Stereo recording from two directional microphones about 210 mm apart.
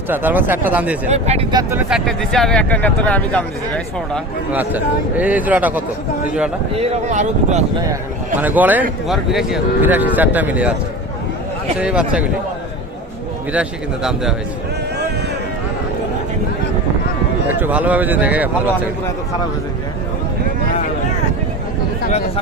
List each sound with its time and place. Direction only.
0.1 s speech: 10° right (ahead or behind)
1.0 s speech: 30° right (ahead or behind)
1.7 s speech: centre (ahead or behind)
4.5 s speech: 10° right (ahead or behind)
6.7 s speech: 35° right (ahead or behind)
8.4 s speech: 10° right (ahead or behind)
11.8 s speech: 5° right (ahead or behind)
13.5 s speech: 5° right (ahead or behind)
17.6 s speech: 5° right (ahead or behind)